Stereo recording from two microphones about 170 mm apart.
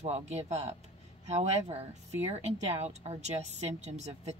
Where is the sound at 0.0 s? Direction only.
40° right (ahead or behind).